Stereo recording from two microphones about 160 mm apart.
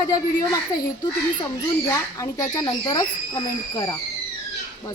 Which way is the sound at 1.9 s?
20° left (ahead or behind).